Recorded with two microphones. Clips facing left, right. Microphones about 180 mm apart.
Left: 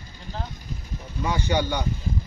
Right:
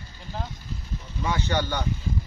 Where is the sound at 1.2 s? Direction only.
10° left (ahead or behind).